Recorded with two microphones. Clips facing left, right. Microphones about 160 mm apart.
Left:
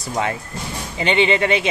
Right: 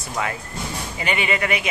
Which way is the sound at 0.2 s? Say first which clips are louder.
Left 3 dB; 30° left (ahead or behind).